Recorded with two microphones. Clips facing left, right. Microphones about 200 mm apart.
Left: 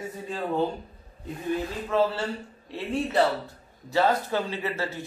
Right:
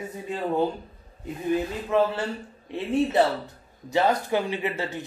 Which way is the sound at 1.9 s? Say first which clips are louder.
Right 2 dB; 15° right (ahead or behind).